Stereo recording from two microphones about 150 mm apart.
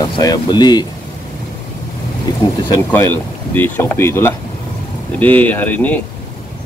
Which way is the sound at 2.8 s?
15° left (ahead or behind).